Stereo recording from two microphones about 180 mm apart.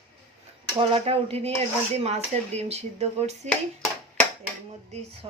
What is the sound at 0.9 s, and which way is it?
Speech, 35° right (ahead or behind).